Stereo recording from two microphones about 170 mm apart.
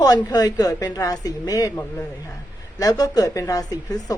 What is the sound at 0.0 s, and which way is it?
A woman's voice, 20° left (ahead or behind).